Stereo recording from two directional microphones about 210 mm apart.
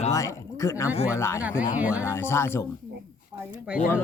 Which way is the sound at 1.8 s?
5° right (ahead or behind).